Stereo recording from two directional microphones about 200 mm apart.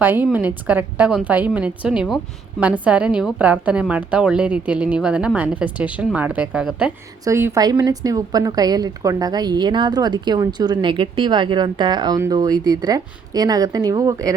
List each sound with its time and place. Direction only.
0.0 s a woman's voice: 10° right (ahead or behind)